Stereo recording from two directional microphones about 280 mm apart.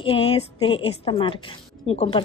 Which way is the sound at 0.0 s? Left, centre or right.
Centre.